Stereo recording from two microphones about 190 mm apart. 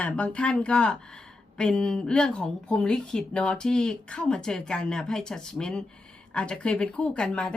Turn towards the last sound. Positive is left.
turn(degrees=5)  # may be behind; listen again after turning